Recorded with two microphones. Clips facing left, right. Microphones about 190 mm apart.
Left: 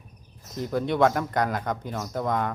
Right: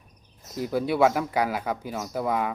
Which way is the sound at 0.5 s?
5° right (ahead or behind).